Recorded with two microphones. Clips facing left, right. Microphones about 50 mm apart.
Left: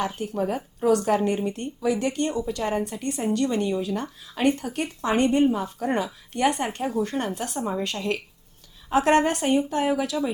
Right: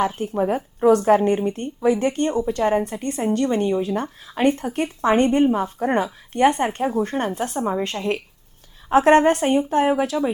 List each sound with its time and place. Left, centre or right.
0.2 s a woman's voice: right